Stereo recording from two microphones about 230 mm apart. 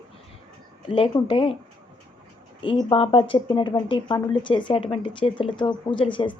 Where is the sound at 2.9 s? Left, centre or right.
Left.